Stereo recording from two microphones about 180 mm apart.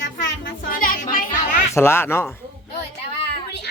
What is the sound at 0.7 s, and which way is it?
Music, 50° left (ahead or behind).